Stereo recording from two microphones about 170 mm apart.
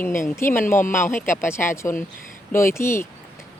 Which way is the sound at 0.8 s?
50° left (ahead or behind).